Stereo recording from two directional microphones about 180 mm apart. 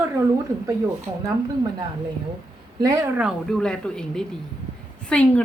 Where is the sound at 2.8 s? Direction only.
20° right (ahead or behind).